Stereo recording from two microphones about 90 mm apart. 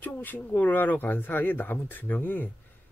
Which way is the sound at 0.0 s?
20° left (ahead or behind).